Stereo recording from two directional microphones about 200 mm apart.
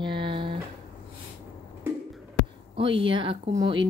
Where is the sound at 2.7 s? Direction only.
25° right (ahead or behind).